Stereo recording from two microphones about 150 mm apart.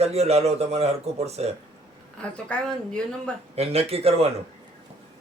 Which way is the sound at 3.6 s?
45° right (ahead or behind).